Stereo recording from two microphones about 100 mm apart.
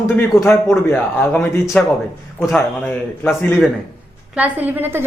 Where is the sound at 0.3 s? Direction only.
25° left (ahead or behind).